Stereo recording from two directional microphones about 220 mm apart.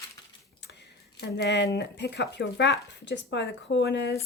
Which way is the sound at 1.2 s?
50° left (ahead or behind).